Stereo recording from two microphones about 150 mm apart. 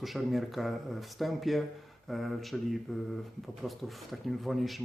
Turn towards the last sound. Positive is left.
turn(degrees=0)  # may be behind; listen again after turning